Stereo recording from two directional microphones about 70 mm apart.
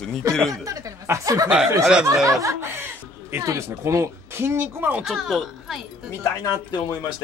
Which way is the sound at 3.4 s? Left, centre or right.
Right.